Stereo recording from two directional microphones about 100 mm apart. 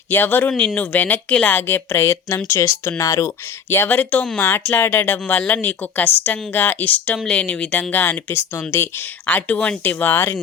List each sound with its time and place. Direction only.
0.1 s speech: 20° left (ahead or behind)